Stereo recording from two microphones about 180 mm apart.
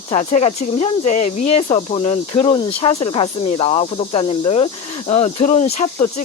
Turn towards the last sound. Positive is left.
turn(degrees=40)  # may be behind; listen again after turning